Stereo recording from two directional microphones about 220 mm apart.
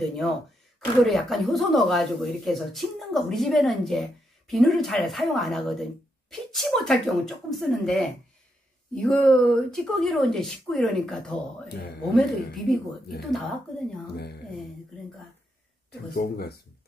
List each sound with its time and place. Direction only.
0.0 s speech: centre (ahead or behind)
14.1 s speech: 45° left (ahead or behind)
16.1 s speech: 45° left (ahead or behind)